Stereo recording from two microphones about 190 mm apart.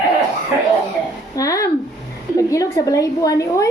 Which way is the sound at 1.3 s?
15° left (ahead or behind).